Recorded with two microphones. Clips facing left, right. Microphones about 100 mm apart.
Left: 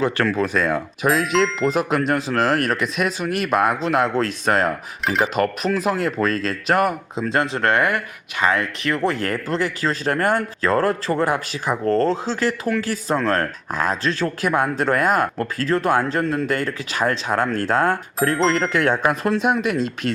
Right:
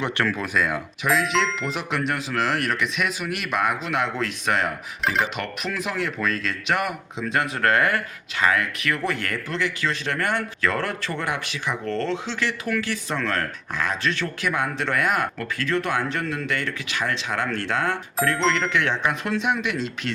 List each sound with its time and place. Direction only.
0.0 s speech: 30° left (ahead or behind)
8.5 s speech: 30° left (ahead or behind)